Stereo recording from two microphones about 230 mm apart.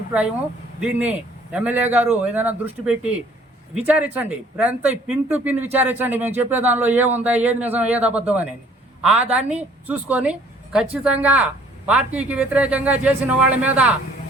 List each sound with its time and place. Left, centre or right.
0.8 s a woman's voice: centre